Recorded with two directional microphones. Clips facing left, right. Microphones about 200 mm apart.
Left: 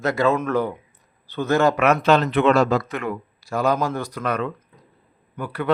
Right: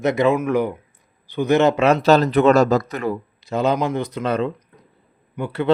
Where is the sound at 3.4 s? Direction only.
20° right (ahead or behind).